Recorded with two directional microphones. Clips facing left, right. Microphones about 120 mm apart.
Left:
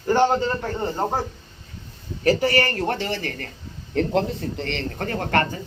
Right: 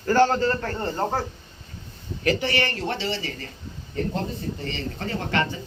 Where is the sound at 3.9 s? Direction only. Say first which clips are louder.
Left 6 dB; 70° left (ahead or behind); by 5.6 s 50° left (ahead or behind).